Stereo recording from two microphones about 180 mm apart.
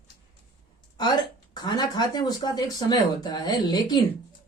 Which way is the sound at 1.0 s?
25° left (ahead or behind).